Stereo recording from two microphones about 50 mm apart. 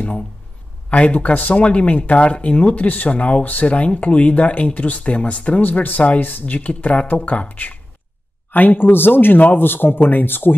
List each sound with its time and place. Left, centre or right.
0.8 s a man's voice: left